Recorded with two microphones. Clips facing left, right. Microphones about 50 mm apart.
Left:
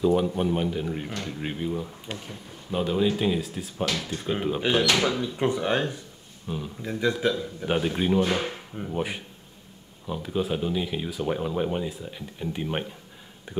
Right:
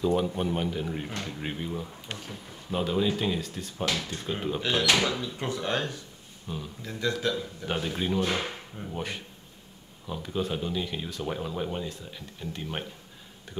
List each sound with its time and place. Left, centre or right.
0.0 s speech: centre